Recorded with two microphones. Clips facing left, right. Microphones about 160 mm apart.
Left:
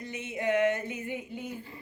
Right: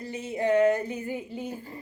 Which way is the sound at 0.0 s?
35° right (ahead or behind).